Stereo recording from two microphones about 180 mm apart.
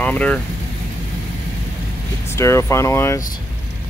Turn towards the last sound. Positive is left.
turn(degrees=15)  # may be behind; listen again after turning